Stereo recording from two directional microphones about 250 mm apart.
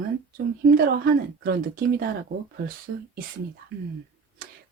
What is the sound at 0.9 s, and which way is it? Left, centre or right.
Speech, right.